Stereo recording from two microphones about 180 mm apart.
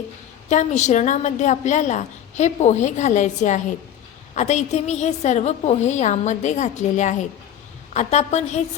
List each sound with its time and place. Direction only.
0.5 s a woman's voice: 40° left (ahead or behind)